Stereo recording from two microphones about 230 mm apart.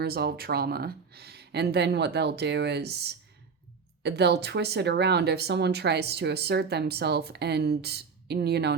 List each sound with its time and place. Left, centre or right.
0.0 s speech: right